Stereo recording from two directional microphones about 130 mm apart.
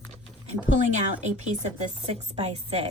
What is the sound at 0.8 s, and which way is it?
Speech, 65° right (ahead or behind).